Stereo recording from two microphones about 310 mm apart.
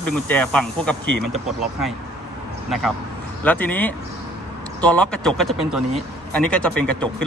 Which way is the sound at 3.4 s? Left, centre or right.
Centre.